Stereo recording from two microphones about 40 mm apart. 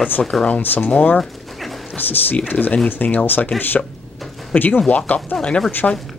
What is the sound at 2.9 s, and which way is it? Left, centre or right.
Speech, left.